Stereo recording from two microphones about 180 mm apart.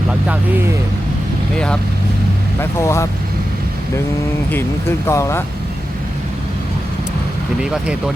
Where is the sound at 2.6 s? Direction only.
15° left (ahead or behind).